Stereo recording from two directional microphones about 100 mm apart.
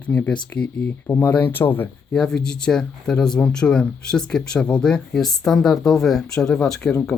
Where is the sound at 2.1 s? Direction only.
10° left (ahead or behind).